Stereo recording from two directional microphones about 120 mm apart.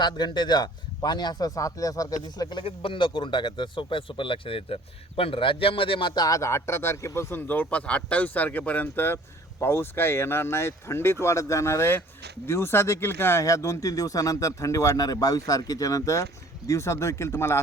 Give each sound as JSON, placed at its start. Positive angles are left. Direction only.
{"t": 0.0, "sound": "speech", "side_deg": 40}